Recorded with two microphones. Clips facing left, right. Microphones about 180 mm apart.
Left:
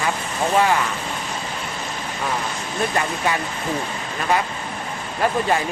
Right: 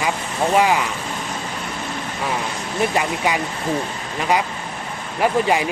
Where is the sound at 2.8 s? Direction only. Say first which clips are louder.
Right 3 dB; 15° right (ahead or behind).